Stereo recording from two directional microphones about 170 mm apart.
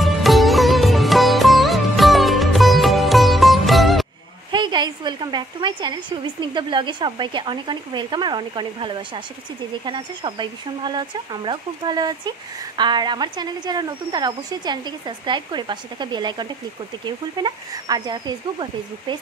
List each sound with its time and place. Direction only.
0.0 s sitar: centre (ahead or behind)
4.5 s speech: 25° right (ahead or behind)